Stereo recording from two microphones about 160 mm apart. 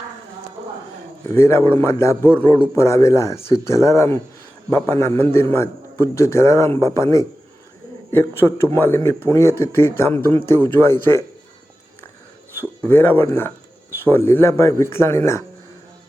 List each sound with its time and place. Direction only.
1.3 s a man's voice: 15° left (ahead or behind)
8.4 s a man's voice: 15° left (ahead or behind)
12.8 s a man's voice: 10° left (ahead or behind)